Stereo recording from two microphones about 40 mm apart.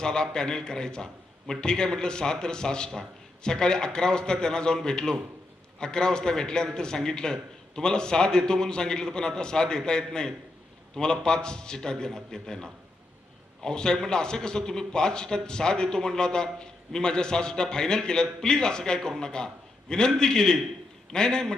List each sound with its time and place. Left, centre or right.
0.0 s a man's voice: centre